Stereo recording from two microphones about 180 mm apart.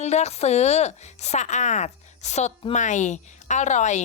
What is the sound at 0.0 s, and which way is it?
A woman's voice, 40° left (ahead or behind).